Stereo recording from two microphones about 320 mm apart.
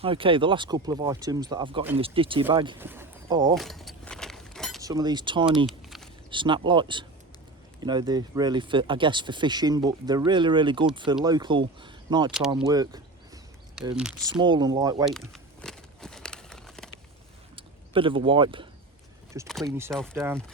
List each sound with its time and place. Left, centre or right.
0.0 s speech: centre
3.5 s keys jangling: centre
4.8 s speech: centre
5.6 s a sound: centre
6.3 s speech: centre
12.5 s a sound: centre
14.3 s speech: centre
15.0 s crumpling: centre
17.6 s speech: centre